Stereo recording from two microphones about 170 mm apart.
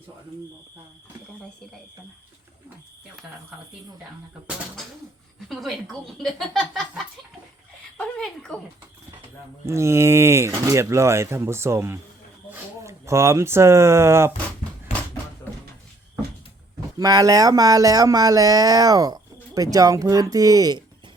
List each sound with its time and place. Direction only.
5.5 s speech: centre (ahead or behind)
9.6 s speech: 15° right (ahead or behind)
17.0 s speech: 20° right (ahead or behind)